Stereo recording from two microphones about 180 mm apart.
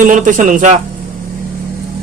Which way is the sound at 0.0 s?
45° right (ahead or behind).